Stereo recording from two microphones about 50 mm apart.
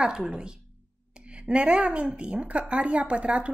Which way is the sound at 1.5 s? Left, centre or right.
Right.